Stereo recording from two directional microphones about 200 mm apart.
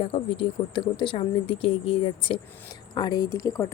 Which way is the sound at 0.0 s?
25° left (ahead or behind).